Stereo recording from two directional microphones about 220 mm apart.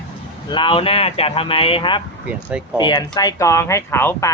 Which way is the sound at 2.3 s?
5° right (ahead or behind).